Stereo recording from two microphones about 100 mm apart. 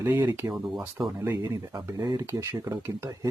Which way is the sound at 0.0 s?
20° right (ahead or behind).